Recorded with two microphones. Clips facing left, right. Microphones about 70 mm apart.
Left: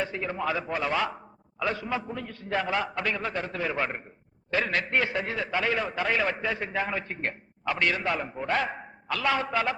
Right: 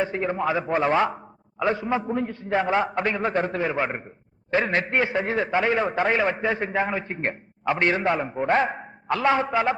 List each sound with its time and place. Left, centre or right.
0.0 s a man's voice: right
3.7 s a man's voice: right